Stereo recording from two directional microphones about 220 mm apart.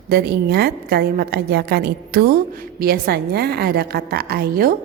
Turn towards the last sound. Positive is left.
turn(degrees=-45)  # may be behind; listen again after turning